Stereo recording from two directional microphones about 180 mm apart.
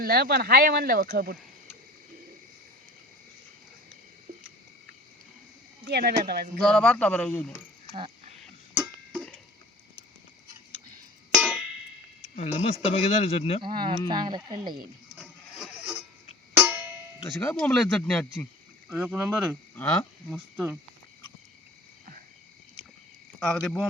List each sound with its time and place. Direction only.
0.0 s speech: 60° right (ahead or behind)
5.9 s speech: 60° right (ahead or behind)
6.6 s speech: 5° left (ahead or behind)
8.7 s a sound: centre (ahead or behind)
11.3 s music: centre (ahead or behind)
12.4 s speech: 35° left (ahead or behind)
13.6 s speech: 25° right (ahead or behind)
15.2 s printer: 5° right (ahead or behind)
16.6 s music: 10° right (ahead or behind)
17.2 s speech: 5° left (ahead or behind)
18.9 s speech: 10° right (ahead or behind)
19.7 s speech: 10° left (ahead or behind)
20.3 s speech: 10° right (ahead or behind)
23.4 s speech: 5° left (ahead or behind)